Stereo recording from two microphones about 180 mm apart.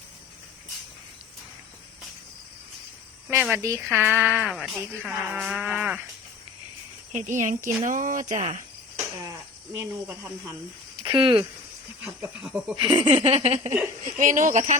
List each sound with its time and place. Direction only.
3.2 s speech: 10° right (ahead or behind)
4.4 s speech: centre (ahead or behind)
7.1 s speech: 45° right (ahead or behind)
8.3 s a sound: 40° right (ahead or behind)
9.2 s speech: 15° right (ahead or behind)
11.0 s speech: 25° right (ahead or behind)
12.0 s speech: 5° right (ahead or behind)
12.7 s a sound: 25° right (ahead or behind)
14.2 s speech: 45° right (ahead or behind)